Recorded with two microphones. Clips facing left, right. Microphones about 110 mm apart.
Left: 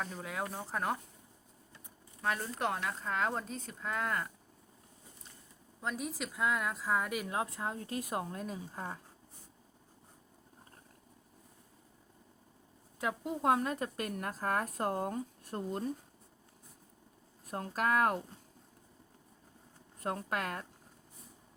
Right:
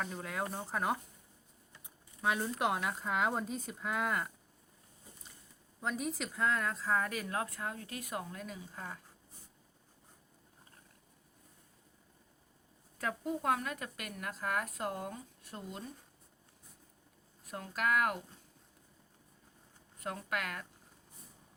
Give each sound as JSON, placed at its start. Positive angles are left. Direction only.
{"t": 0.0, "sound": "speech", "side_deg": 0}
{"t": 2.2, "sound": "speech", "side_deg": -10}
{"t": 5.8, "sound": "speech", "side_deg": 0}
{"t": 13.0, "sound": "a woman's voice", "side_deg": 20}
{"t": 17.4, "sound": "a woman's voice", "side_deg": 35}
{"t": 20.0, "sound": "a woman's voice", "side_deg": 35}